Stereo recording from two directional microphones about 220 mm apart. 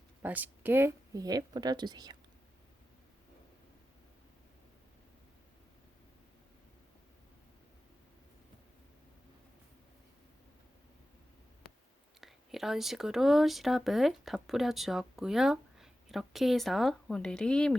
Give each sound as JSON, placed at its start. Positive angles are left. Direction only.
{"t": 0.2, "sound": "speech", "side_deg": -5}
{"t": 12.2, "sound": "speech", "side_deg": 0}